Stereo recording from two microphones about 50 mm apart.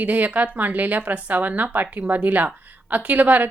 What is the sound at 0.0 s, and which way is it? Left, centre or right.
A woman's voice, right.